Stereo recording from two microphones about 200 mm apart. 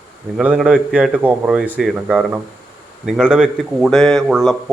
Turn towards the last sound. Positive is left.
turn(degrees=0)  # may be behind; listen again after turning